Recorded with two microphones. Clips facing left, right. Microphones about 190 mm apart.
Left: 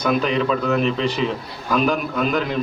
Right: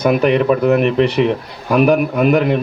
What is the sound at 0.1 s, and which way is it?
A man's voice, 60° right (ahead or behind).